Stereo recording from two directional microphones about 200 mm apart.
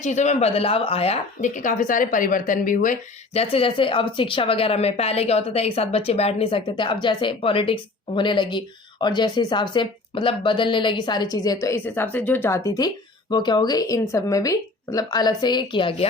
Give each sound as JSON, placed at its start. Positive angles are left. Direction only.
{"t": 0.0, "sound": "speech", "side_deg": 35}